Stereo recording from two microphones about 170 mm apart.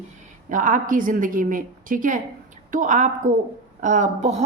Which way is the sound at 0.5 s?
50° right (ahead or behind).